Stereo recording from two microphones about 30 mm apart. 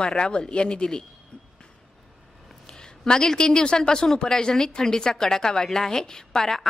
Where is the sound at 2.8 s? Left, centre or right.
Left.